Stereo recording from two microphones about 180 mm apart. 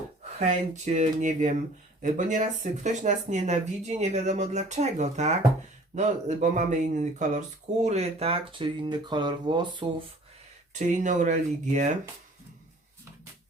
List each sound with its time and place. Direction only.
0.3 s speech: 40° right (ahead or behind); by 9.8 s 25° right (ahead or behind)
10.8 s speech: 45° right (ahead or behind)